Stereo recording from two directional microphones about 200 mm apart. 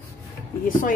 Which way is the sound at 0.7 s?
40° left (ahead or behind).